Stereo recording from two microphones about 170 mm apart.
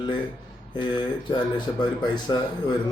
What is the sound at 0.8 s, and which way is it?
A man's voice, 25° left (ahead or behind).